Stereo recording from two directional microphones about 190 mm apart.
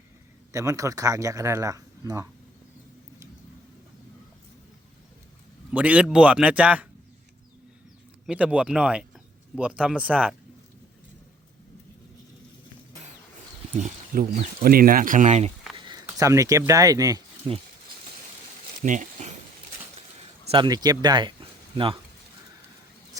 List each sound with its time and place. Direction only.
0.5 s speech: 15° right (ahead or behind)
5.7 s speech: 5° right (ahead or behind)
8.3 s speech: 5° right (ahead or behind)
13.7 s speech: 45° right (ahead or behind)
15.8 s speech: 20° right (ahead or behind)
18.8 s a sound: 40° right (ahead or behind)
20.5 s speech: 25° right (ahead or behind)